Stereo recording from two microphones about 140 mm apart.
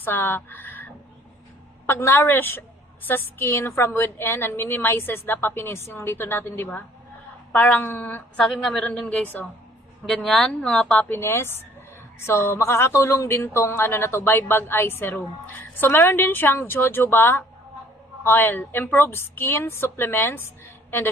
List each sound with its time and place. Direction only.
0.0 s speech: 15° left (ahead or behind)
1.9 s a woman's voice: 15° left (ahead or behind)
11.1 s speech: 15° left (ahead or behind)